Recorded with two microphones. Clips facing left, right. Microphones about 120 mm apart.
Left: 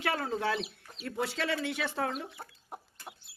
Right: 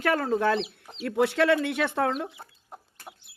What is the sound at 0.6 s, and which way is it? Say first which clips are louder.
Speech: right 6 dB; 20° right (ahead or behind).